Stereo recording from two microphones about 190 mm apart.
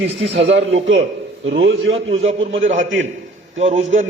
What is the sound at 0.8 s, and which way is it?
A man's voice, 80° right.